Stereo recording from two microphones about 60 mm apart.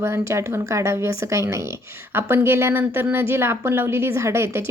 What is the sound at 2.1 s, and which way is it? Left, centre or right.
Speech, right.